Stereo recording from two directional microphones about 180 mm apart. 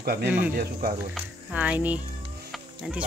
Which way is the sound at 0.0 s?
60° right (ahead or behind).